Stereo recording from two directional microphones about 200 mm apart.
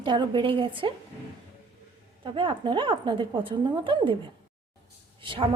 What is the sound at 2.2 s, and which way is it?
Speech, 25° right (ahead or behind).